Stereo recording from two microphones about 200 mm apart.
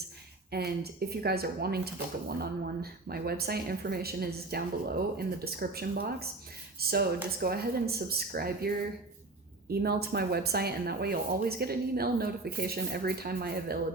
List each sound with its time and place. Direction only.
0.5 s speech: 50° right (ahead or behind)